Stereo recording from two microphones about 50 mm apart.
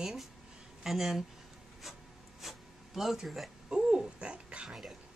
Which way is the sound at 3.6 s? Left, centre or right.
Centre.